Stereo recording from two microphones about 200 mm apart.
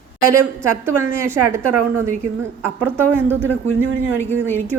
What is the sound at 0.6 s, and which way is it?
Speech, 10° right (ahead or behind).